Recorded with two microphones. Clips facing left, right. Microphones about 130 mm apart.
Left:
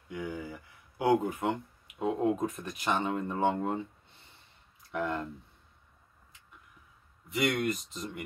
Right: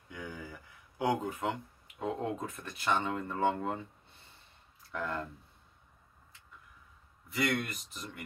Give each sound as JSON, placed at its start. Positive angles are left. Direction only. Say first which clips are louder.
{"t": 0.1, "sound": "a sound", "louder": "left 6 dB", "side_deg": 15}
{"t": 2.0, "sound": "speech", "louder": "left 6 dB", "side_deg": 15}
{"t": 4.9, "sound": "speech", "louder": "left 4 dB", "side_deg": 15}
{"t": 7.2, "sound": "speech", "louder": "left 4 dB", "side_deg": 20}